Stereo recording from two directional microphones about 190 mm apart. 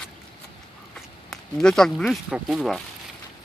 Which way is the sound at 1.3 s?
5° left (ahead or behind).